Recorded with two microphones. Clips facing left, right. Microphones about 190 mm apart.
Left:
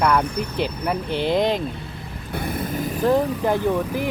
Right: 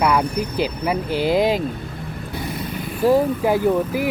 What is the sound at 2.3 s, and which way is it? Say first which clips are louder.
Vehicle: left 3 dB; 55° left (ahead or behind).